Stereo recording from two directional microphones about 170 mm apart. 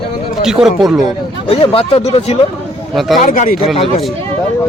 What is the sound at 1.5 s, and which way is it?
Speech, 35° left (ahead or behind).